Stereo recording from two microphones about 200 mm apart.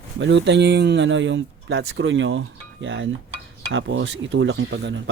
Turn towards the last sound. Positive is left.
turn(degrees=-65)  # may be behind; listen again after turning